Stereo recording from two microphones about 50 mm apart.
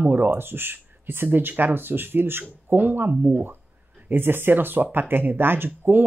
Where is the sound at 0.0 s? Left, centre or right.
Right.